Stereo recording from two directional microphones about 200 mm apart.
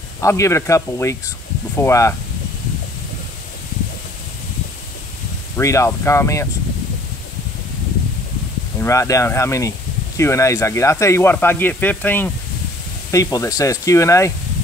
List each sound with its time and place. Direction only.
0.2 s speech: 15° left (ahead or behind)
5.6 s speech: 15° left (ahead or behind)
8.7 s speech: 15° left (ahead or behind)